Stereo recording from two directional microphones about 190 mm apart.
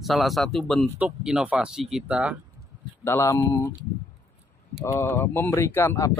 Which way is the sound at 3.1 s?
15° left (ahead or behind).